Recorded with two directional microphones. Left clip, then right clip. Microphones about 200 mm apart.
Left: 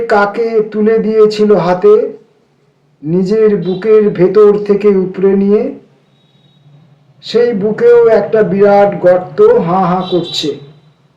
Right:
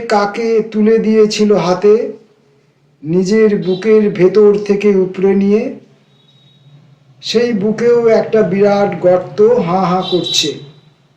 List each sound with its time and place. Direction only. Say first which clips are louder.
0.1 s speech: left 1 dB; 30° left (ahead or behind)
3.1 s speech: left 1 dB; 30° left (ahead or behind)
7.3 s speech: left 3 dB; 30° left (ahead or behind)